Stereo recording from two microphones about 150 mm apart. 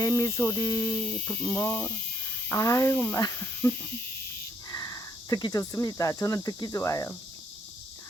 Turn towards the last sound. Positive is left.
turn(degrees=20)  # may be behind; listen again after turning